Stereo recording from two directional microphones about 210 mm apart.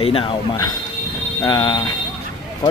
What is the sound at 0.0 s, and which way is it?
Speech, 25° left (ahead or behind).